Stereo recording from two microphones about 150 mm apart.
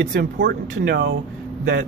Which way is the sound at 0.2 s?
90° right.